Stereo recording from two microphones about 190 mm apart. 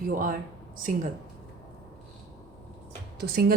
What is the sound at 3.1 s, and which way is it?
Speech, 55° right (ahead or behind).